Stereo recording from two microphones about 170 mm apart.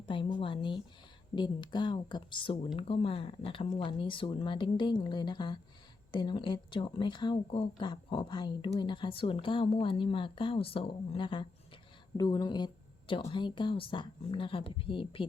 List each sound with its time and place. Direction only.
0.0 s a woman's voice: 30° left (ahead or behind)